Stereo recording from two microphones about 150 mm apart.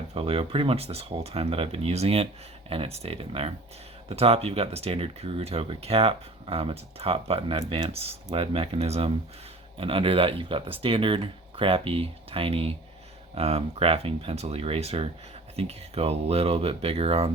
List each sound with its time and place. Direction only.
0.1 s speech: 40° right (ahead or behind)